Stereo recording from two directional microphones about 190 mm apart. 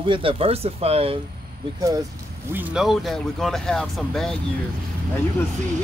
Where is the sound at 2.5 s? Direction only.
5° right (ahead or behind).